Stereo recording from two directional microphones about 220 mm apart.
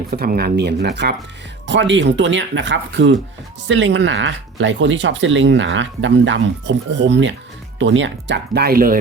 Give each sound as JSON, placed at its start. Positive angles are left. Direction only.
{"t": 0.1, "sound": "speech", "side_deg": -45}